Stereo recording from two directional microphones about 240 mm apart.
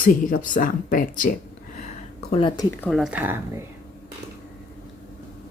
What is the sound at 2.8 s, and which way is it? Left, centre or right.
Speech, centre.